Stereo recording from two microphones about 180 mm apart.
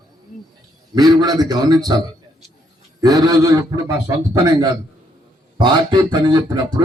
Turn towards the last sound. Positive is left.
turn(degrees=-25)  # may be behind; listen again after turning